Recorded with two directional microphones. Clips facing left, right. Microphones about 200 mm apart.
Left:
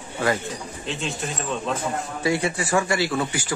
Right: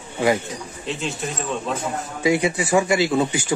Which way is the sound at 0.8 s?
Centre (ahead or behind).